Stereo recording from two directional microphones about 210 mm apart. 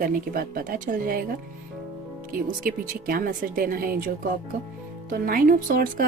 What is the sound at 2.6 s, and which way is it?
Speech, 40° right (ahead or behind).